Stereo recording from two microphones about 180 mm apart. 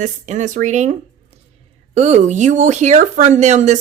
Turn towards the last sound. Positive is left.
turn(degrees=-40)  # may be behind; listen again after turning